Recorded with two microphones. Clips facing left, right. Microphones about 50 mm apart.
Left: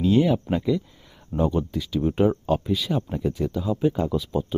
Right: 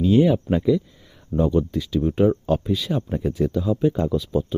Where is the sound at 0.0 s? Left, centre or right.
Centre.